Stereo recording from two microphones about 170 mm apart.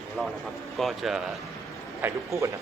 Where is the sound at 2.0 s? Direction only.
20° right (ahead or behind).